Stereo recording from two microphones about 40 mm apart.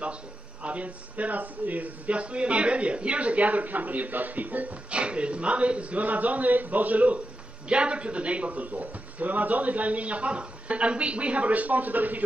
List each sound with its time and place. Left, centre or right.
0.0 s speech: right
4.9 s speech: right
7.6 s speech: right